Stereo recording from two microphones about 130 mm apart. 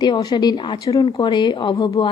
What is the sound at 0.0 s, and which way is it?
A woman's voice, 30° left (ahead or behind).